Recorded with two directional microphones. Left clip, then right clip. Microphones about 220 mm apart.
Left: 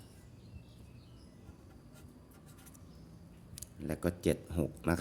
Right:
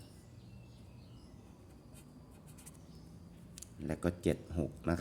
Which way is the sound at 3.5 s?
5° left (ahead or behind).